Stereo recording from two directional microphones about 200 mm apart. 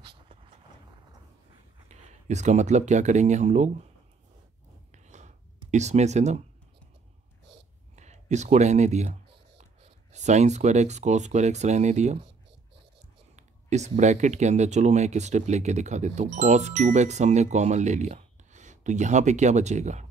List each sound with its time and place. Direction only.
0.0 s vehicle: 25° right (ahead or behind)
1.9 s speech: 35° right (ahead or behind)
4.9 s a sound: 35° right (ahead or behind)
5.7 s speech: 35° right (ahead or behind)
7.9 s a sound: 35° right (ahead or behind)
10.1 s speech: 35° right (ahead or behind)
13.4 s speech: 35° right (ahead or behind)